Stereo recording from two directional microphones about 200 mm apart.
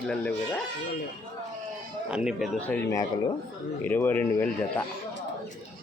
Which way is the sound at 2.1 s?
5° right (ahead or behind).